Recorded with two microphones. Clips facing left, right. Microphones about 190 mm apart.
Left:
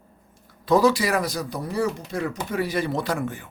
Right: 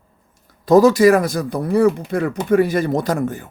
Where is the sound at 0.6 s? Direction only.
45° right (ahead or behind).